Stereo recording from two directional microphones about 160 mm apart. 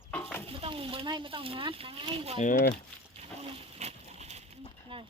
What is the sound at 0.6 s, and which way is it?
Speech, 35° right (ahead or behind).